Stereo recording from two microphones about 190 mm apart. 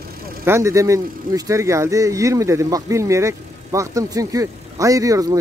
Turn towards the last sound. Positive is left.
turn(degrees=-20)  # may be behind; listen again after turning